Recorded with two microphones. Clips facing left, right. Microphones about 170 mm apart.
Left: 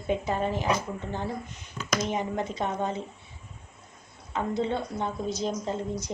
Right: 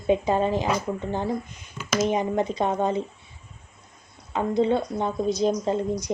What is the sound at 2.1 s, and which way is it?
Speech, 15° right (ahead or behind).